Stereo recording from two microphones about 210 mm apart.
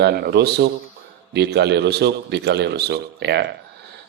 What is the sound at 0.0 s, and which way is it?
A man's voice, 50° right (ahead or behind).